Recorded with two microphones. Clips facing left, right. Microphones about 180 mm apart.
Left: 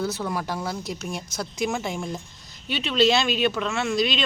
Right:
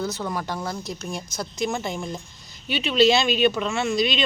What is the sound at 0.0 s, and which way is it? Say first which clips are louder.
Speech: left 1 dB; 5° left (ahead or behind).